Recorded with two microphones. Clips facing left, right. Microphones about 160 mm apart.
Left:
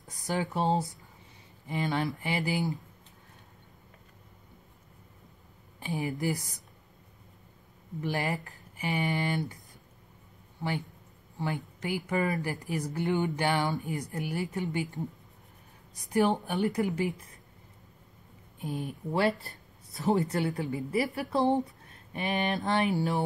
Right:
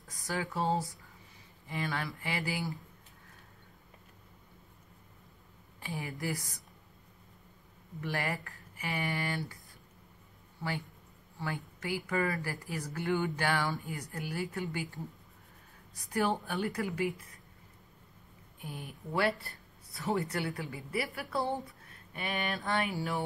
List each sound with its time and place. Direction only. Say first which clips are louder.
0.1 s speech: left 5 dB; 20° left (ahead or behind)
5.8 s speech: left 7 dB; 20° left (ahead or behind)
8.0 s speech: left 4 dB; 20° left (ahead or behind)
11.3 s speech: left 5 dB; 20° left (ahead or behind)
18.6 s speech: left 9 dB; 20° left (ahead or behind)